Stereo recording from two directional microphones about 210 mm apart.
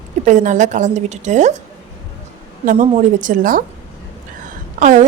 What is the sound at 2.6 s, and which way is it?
A woman's voice, 35° right (ahead or behind).